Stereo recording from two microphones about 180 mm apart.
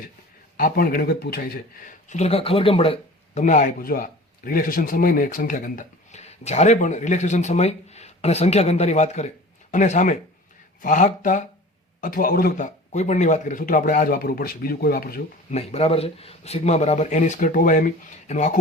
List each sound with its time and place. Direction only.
0.5 s a man's voice: 55° left (ahead or behind)
2.0 s speech: 40° left (ahead or behind)
3.4 s a man's voice: 45° left (ahead or behind)
15.4 s a man's voice: 35° left (ahead or behind)